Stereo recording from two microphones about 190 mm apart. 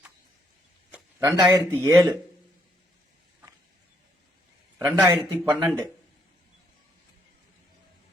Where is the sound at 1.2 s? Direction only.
15° right (ahead or behind).